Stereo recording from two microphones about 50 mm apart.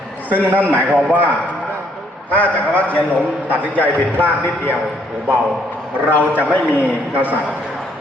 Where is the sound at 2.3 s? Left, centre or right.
Left.